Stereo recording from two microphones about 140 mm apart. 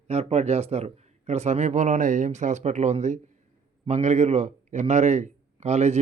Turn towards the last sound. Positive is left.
turn(degrees=-55)  # may be behind; listen again after turning